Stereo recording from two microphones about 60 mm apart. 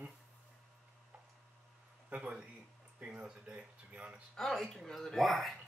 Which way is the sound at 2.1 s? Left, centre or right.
Centre.